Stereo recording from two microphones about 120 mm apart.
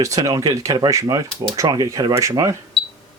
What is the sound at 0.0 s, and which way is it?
Speech, 25° right (ahead or behind).